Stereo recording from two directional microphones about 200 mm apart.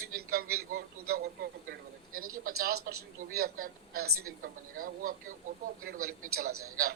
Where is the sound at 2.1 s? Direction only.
90° right.